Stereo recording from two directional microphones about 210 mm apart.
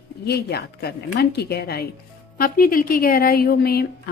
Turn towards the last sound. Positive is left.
turn(degrees=45)  # may be behind; listen again after turning